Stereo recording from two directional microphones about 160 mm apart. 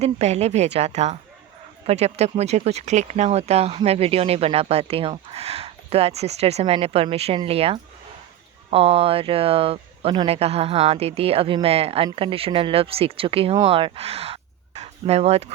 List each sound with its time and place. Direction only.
0.0 s a woman's voice: 45° right (ahead or behind)